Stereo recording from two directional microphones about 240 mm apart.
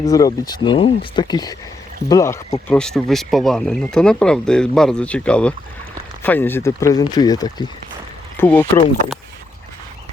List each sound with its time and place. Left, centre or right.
0.0 s speech: centre